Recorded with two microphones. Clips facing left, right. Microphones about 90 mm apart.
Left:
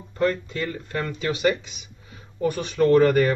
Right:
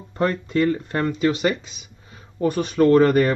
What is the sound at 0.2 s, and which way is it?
Speech, 35° right (ahead or behind).